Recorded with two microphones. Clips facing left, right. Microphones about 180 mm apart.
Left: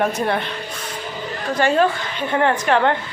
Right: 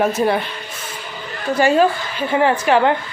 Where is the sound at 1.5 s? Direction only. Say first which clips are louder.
Right 3 dB; 5° right (ahead or behind).